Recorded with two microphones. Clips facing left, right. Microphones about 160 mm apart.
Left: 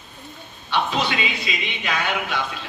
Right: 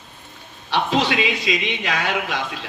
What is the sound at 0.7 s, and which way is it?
A man's voice, 90° right.